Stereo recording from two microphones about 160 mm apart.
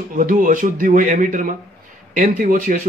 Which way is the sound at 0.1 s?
55° right (ahead or behind).